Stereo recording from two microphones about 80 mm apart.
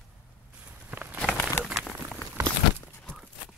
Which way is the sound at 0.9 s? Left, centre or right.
Right.